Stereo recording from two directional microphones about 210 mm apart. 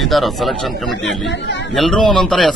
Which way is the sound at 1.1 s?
60° left (ahead or behind).